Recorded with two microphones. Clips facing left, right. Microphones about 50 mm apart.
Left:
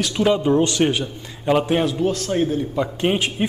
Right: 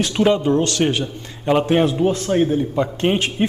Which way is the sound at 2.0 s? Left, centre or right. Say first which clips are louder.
Right 3 dB; centre.